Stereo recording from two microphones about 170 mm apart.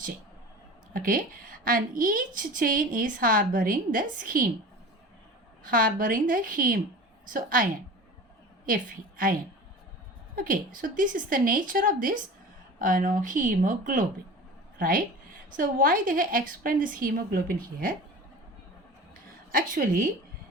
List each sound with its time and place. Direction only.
0.9 s a woman's voice: 55° right (ahead or behind)
5.6 s a woman's voice: 55° right (ahead or behind)
19.5 s a woman's voice: 55° right (ahead or behind)